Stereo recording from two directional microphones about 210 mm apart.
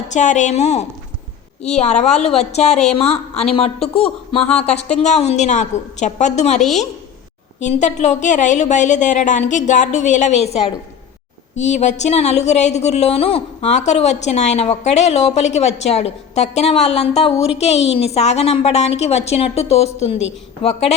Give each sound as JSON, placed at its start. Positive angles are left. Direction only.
{"t": 0.1, "sound": "a woman's voice", "side_deg": 35}
{"t": 4.4, "sound": "speech", "side_deg": 5}
{"t": 4.7, "sound": "a woman's voice", "side_deg": 30}